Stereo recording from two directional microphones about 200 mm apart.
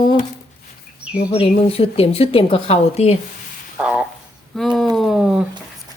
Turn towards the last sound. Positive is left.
turn(degrees=-5)  # may be behind; listen again after turning